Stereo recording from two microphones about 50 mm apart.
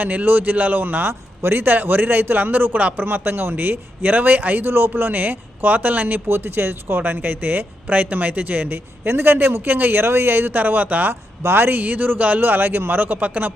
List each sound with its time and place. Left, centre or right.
0.0 s speech: right
6.2 s speech: right
9.0 s a man's voice: right
11.1 s a man's voice: right
11.8 s speech: right